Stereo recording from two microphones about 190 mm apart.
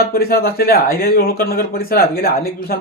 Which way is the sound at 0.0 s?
55° left (ahead or behind).